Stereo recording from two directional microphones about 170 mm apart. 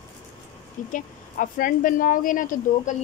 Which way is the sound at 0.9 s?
50° left (ahead or behind).